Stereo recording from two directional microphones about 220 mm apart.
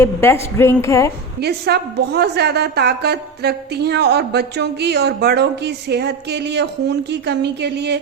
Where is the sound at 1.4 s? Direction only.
50° right (ahead or behind).